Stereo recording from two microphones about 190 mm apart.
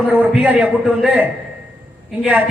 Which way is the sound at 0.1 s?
5° right (ahead or behind).